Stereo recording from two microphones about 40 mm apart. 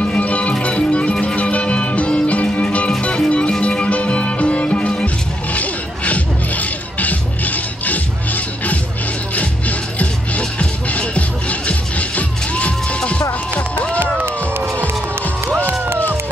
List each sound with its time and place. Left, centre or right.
0.2 s music: left
5.5 s music: left
9.3 s music: left
15.4 s music: right